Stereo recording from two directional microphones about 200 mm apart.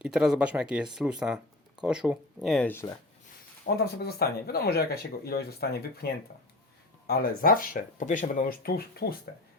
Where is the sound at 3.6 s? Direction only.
50° left (ahead or behind).